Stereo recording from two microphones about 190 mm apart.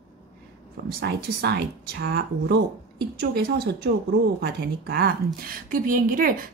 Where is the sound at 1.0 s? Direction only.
60° right (ahead or behind).